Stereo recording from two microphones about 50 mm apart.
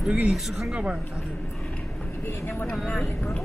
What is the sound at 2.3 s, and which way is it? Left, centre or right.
Speech, left.